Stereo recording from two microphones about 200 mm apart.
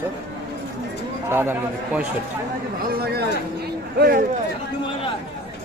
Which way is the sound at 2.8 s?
50° right (ahead or behind).